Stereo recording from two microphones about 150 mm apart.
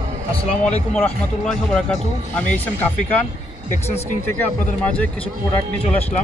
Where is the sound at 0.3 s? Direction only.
45° left (ahead or behind).